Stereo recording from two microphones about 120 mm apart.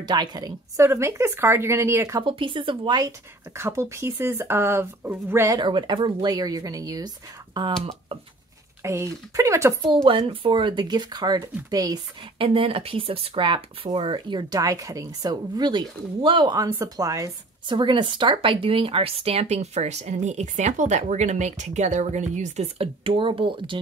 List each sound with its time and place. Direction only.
0.0 s speech: 35° right (ahead or behind)
2.1 s speech: 45° right (ahead or behind)
3.0 s speech: 25° right (ahead or behind)
5.6 s speech: 40° right (ahead or behind)
8.8 s speech: 25° right (ahead or behind)
10.0 s speech: 50° right (ahead or behind); by 12.0 s 30° right (ahead or behind)
12.4 s speech: 50° right (ahead or behind)
14.5 s speech: 30° right (ahead or behind)
16.7 s speech: 25° right (ahead or behind)
17.6 s speech: 40° right (ahead or behind); by 22.7 s 90° right
22.8 s speech: 45° right (ahead or behind)